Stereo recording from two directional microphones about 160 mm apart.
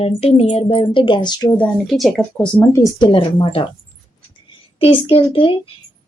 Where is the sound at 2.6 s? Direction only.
20° left (ahead or behind).